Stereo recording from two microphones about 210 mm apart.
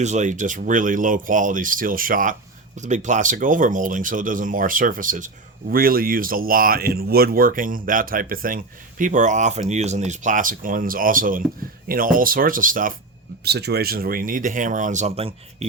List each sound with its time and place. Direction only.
0.0 s speech: 35° right (ahead or behind)